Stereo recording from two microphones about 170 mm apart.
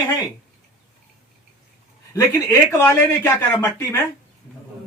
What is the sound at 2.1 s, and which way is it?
Speech, 15° left (ahead or behind).